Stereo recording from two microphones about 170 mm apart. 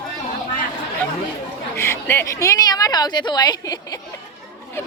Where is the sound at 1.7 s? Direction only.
15° left (ahead or behind).